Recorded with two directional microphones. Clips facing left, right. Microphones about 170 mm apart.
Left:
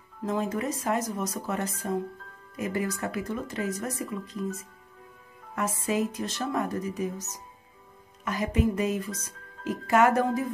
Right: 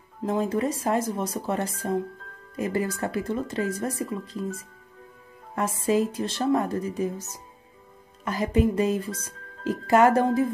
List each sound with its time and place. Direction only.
0.2 s speech: 30° right (ahead or behind)